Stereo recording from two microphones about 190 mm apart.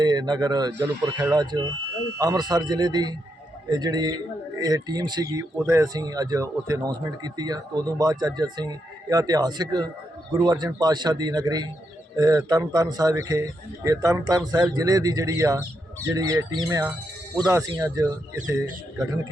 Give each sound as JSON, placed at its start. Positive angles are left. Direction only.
{"t": 0.0, "sound": "speech", "side_deg": -20}